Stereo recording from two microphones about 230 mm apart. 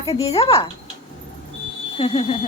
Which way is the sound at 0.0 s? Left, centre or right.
Left.